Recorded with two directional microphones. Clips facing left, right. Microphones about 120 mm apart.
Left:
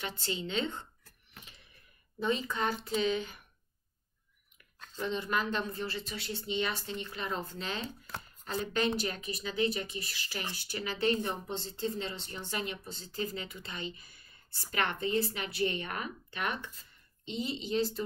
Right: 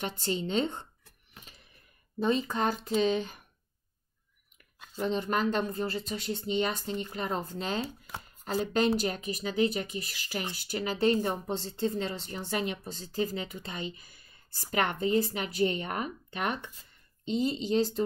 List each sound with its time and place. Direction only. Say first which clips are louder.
0.0 s a woman's voice: right 5 dB; 40° right (ahead or behind)
2.1 s a woman's voice: right 4 dB; 40° right (ahead or behind)
4.7 s a sound: right 4 dB; 10° right (ahead or behind)
5.0 s a woman's voice: right 4 dB; 40° right (ahead or behind)